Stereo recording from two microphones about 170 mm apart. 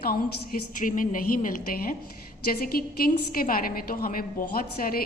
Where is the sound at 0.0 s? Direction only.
60° left (ahead or behind).